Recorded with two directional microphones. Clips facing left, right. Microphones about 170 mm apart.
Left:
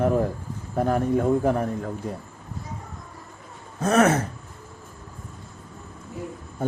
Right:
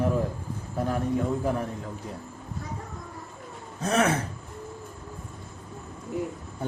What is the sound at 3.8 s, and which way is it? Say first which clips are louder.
Speech: left 5 dB; 50° left (ahead or behind).